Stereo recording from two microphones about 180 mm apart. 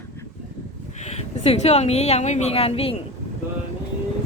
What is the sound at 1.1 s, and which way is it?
Speech, 35° left (ahead or behind).